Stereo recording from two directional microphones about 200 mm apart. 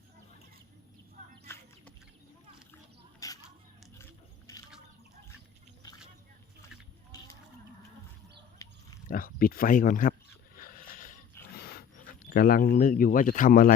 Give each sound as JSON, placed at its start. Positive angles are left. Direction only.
{"t": 3.2, "sound": "a sound", "side_deg": 15}
{"t": 4.5, "sound": "liquid", "side_deg": 15}
{"t": 8.6, "sound": "pig", "side_deg": 15}
{"t": 9.0, "sound": "speech", "side_deg": 45}
{"t": 10.6, "sound": "a sound", "side_deg": 45}
{"t": 12.3, "sound": "speech", "side_deg": 45}